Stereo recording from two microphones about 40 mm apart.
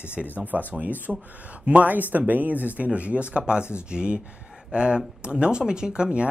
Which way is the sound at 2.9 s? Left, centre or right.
Right.